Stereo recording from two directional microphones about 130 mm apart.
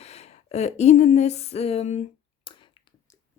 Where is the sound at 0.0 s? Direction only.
55° left (ahead or behind).